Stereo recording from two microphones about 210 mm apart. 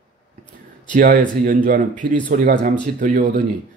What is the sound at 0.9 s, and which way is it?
Speech, 40° right (ahead or behind).